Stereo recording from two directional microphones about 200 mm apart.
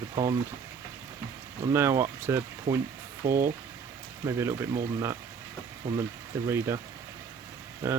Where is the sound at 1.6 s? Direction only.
10° right (ahead or behind).